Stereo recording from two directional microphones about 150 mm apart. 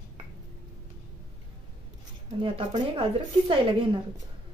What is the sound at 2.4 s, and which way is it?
A woman's voice, 35° right (ahead or behind).